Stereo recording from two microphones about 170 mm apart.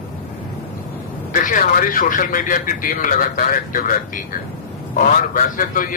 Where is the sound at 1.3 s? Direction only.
50° left (ahead or behind).